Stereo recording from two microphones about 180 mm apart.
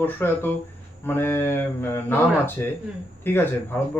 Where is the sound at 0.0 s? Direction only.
10° left (ahead or behind).